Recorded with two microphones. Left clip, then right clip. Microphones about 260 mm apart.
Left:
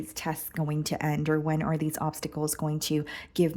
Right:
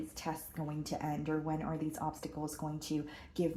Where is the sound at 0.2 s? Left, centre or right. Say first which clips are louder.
Left 9 dB; left.